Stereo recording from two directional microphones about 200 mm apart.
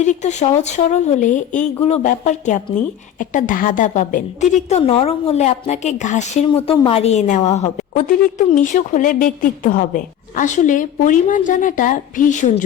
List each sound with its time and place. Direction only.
0.0 s a woman's voice: 35° left (ahead or behind)